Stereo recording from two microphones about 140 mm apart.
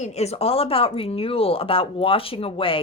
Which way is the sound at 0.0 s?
50° left (ahead or behind).